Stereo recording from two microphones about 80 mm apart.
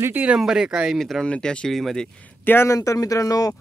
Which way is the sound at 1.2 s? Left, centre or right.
Centre.